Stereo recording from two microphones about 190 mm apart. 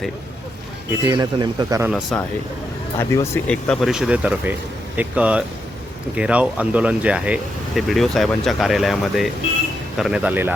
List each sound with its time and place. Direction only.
1.0 s speech: 20° right (ahead or behind)
1.9 s speech: centre (ahead or behind)
3.0 s speech: 15° left (ahead or behind); by 10.5 s 10° right (ahead or behind)